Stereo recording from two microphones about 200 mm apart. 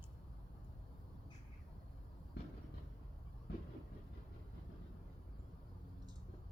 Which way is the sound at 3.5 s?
55° left (ahead or behind).